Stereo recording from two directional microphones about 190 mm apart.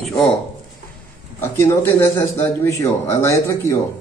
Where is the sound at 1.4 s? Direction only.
10° left (ahead or behind).